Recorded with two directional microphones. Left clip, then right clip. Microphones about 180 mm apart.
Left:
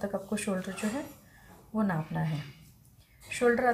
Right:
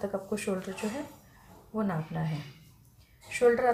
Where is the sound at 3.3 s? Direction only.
10° right (ahead or behind).